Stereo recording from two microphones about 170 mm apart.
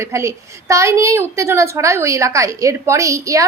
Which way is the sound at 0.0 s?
15° right (ahead or behind).